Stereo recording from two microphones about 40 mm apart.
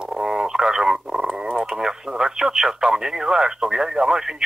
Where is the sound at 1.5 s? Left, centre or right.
Right.